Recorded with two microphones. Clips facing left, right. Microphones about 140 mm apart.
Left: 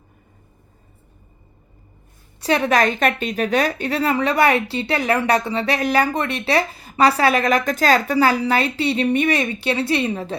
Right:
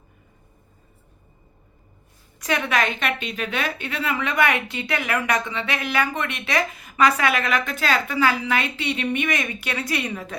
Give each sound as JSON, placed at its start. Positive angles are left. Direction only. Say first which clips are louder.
{"t": 2.4, "sound": "a woman's voice", "louder": "left 6 dB", "side_deg": 35}